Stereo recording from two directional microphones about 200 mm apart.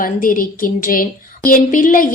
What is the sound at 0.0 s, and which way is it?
A woman's voice, 45° left (ahead or behind).